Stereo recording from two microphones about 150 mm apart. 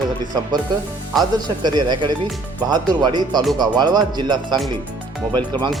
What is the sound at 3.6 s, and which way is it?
A man's voice, 30° right (ahead or behind).